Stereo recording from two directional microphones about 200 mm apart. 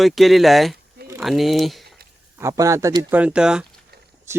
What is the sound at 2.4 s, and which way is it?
Speech, 15° right (ahead or behind).